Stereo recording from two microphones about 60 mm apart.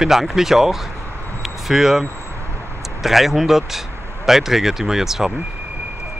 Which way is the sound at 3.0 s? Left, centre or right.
Centre.